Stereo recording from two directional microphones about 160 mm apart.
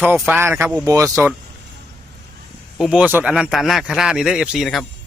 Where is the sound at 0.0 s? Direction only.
10° right (ahead or behind).